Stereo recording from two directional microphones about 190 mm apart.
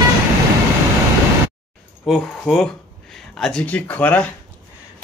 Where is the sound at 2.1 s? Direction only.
Centre (ahead or behind).